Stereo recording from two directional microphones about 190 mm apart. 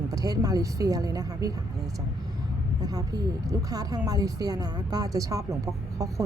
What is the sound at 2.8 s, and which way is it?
A woman's voice, 20° right (ahead or behind).